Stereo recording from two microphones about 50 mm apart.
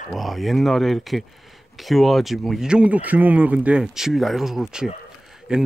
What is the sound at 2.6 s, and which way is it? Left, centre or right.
Speech, centre.